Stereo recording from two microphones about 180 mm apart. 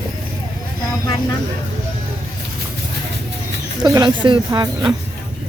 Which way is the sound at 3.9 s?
25° right (ahead or behind).